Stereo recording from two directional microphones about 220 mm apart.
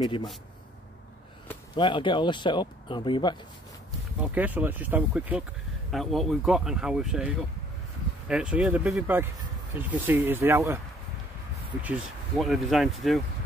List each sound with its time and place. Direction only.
0.0 s speech: 20° left (ahead or behind)
1.8 s speech: 20° left (ahead or behind)
4.2 s speech: 5° right (ahead or behind)
11.8 s speech: 5° right (ahead or behind)